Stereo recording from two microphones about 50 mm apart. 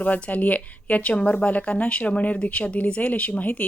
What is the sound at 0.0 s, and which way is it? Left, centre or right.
Speech, left.